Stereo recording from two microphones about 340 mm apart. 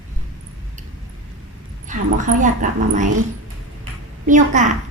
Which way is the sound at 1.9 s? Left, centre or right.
Right.